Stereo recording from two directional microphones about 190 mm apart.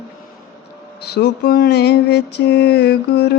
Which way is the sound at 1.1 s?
55° left (ahead or behind).